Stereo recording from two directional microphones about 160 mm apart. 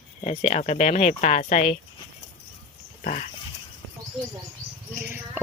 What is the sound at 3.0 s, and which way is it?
Dog, 55° left (ahead or behind).